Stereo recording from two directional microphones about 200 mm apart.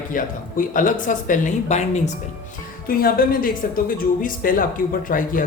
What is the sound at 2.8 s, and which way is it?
A woman's voice, 45° left (ahead or behind).